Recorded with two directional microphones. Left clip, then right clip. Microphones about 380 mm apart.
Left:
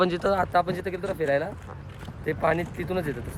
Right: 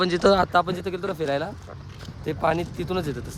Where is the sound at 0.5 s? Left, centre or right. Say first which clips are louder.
Right 2 dB; centre.